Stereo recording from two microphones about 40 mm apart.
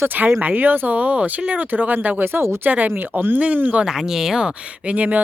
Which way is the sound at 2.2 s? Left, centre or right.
Right.